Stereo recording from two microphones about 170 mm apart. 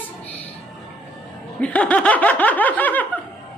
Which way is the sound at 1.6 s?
5° left (ahead or behind).